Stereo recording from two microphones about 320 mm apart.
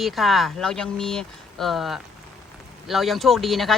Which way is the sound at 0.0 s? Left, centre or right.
Centre.